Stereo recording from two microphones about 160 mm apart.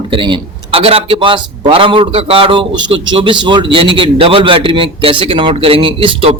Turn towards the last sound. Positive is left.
turn(degrees=-35)  # may be behind; listen again after turning